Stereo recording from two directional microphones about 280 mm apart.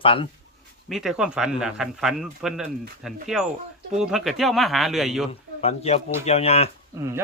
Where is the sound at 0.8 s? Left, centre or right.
Centre.